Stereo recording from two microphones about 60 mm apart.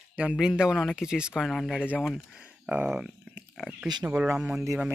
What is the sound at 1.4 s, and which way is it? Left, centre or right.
Speech, centre.